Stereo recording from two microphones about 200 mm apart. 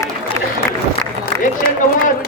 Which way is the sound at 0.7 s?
15° left (ahead or behind).